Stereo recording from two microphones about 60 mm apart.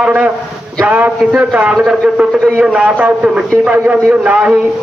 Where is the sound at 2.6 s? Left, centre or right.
Centre.